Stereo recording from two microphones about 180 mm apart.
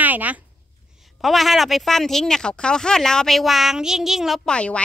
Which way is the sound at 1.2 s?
Centre (ahead or behind).